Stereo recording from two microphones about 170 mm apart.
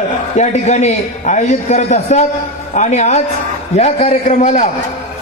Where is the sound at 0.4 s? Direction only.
40° left (ahead or behind).